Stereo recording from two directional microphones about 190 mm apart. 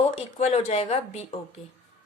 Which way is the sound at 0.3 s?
35° left (ahead or behind).